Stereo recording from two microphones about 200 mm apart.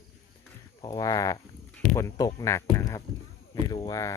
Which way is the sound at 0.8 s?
20° left (ahead or behind).